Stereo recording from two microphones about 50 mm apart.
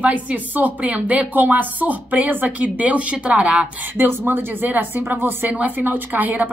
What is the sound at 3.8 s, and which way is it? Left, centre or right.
Speech, right.